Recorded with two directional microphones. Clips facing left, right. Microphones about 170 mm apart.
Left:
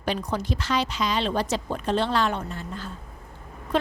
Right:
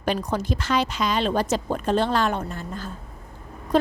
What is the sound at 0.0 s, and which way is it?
A woman's voice, 50° right (ahead or behind).